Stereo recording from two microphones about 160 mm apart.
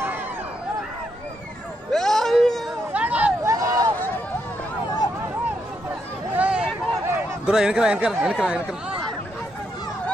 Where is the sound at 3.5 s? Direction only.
20° right (ahead or behind).